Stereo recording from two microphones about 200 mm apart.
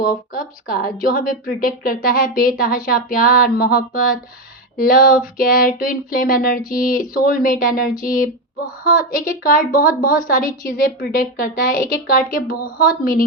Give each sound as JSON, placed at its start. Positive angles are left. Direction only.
{"t": 0.7, "sound": "speech", "side_deg": 45}